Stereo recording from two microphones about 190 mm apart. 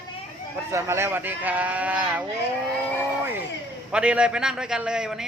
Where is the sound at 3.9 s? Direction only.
5° right (ahead or behind).